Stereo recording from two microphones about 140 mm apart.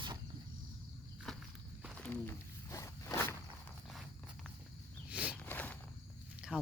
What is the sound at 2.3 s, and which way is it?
Wild animals, 20° left (ahead or behind).